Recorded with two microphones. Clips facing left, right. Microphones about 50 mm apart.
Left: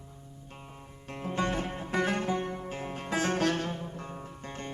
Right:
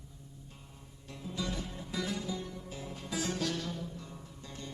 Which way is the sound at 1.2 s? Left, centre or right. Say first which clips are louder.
Left 8 dB; left.